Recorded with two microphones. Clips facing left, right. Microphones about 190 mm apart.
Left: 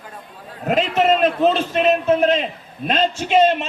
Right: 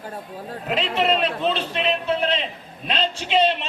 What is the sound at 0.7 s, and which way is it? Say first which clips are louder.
A man's voice: left 5 dB; 45° left (ahead or behind).